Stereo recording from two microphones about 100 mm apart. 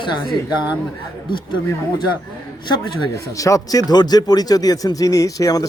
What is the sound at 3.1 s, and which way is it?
Speech, 35° left (ahead or behind).